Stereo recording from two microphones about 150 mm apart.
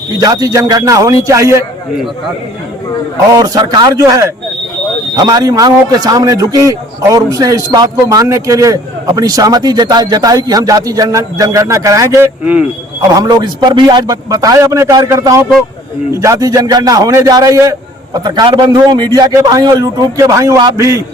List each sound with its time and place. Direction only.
0.2 s a man's voice: 25° right (ahead or behind)
3.2 s a man's voice: 25° right (ahead or behind)
13.0 s a man's voice: 25° right (ahead or behind)